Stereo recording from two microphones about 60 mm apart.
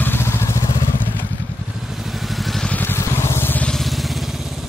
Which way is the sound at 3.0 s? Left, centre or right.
Left.